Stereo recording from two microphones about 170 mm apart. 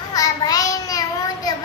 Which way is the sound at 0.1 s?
20° left (ahead or behind).